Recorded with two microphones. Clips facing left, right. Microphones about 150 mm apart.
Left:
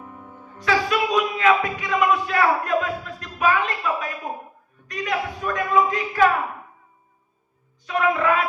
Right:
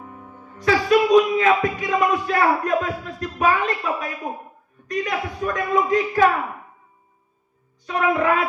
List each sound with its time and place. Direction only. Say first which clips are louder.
0.6 s speech: right 4 dB; 45° right (ahead or behind)
7.9 s speech: right 1 dB; 45° right (ahead or behind)